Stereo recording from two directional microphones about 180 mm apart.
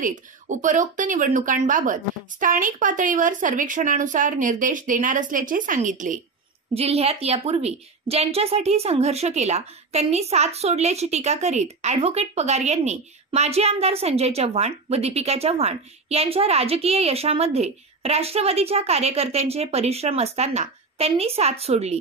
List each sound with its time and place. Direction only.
0.0 s speech: 45° right (ahead or behind)
6.7 s a woman's voice: 35° right (ahead or behind)